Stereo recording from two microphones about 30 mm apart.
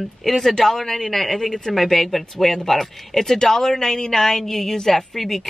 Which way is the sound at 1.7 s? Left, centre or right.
Centre.